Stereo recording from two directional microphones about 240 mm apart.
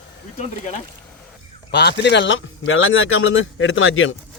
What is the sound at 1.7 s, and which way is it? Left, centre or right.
Speech, left.